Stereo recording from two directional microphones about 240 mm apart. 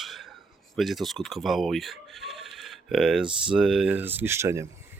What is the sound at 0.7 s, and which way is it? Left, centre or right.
Mechanisms, centre.